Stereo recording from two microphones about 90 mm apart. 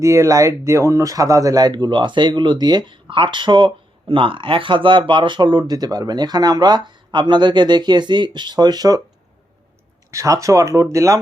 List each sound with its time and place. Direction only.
0.0 s speech: 35° right (ahead or behind); by 3.7 s 60° right (ahead or behind)
4.1 s speech: 75° right (ahead or behind); by 9.0 s 45° right (ahead or behind)
10.1 s speech: 35° right (ahead or behind)